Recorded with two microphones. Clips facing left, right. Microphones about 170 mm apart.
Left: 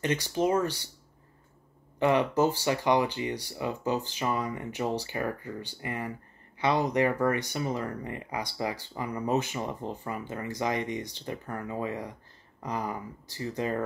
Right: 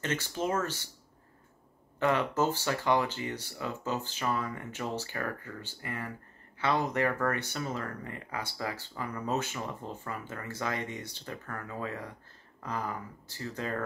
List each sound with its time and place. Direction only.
0.0 s speech: 15° left (ahead or behind)
2.0 s speech: 15° left (ahead or behind)